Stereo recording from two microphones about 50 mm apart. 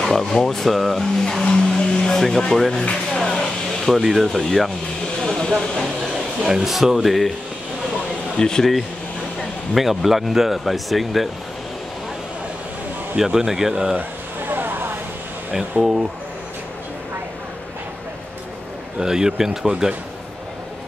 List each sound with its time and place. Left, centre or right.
0.0 s speech: centre
2.8 s speech: left
3.2 s a sound: centre
4.0 s speech: centre
4.4 s speech: centre
5.2 s train: centre
6.4 s speech: centre
8.4 s speech: centre
9.8 s speech: centre
13.2 s speech: centre
14.5 s a sound: right
15.8 s speech: centre
18.9 s speech: centre